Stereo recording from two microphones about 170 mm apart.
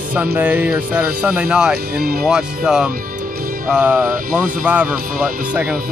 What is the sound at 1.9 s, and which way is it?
Speech, 65° right (ahead or behind).